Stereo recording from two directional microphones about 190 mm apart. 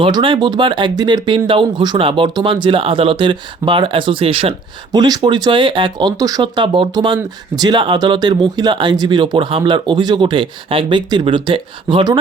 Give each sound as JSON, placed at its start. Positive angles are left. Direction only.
{"t": 0.0, "sound": "speech", "side_deg": -25}